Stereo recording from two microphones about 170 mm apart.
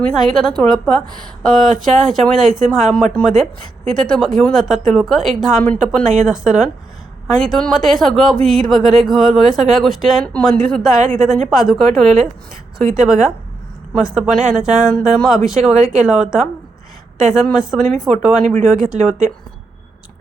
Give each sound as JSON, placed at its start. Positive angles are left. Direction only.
{"t": 0.0, "sound": "speech", "side_deg": 5}